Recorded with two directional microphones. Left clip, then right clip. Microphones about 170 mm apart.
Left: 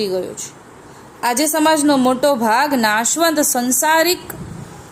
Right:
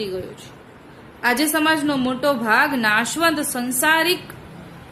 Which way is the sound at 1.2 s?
45° left (ahead or behind).